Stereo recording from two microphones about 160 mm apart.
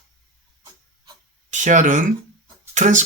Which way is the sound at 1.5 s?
50° right (ahead or behind).